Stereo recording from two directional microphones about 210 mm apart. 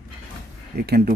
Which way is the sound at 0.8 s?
45° right (ahead or behind).